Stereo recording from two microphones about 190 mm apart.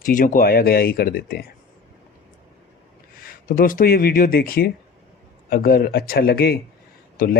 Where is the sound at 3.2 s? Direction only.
50° left (ahead or behind).